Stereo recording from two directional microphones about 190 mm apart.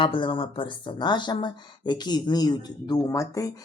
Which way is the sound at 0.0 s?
25° left (ahead or behind).